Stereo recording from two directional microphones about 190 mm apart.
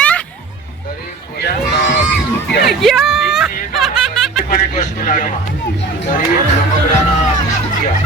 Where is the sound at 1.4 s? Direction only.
55° left (ahead or behind).